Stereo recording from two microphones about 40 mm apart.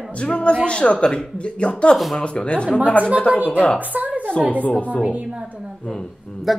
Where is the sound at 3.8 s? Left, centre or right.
Right.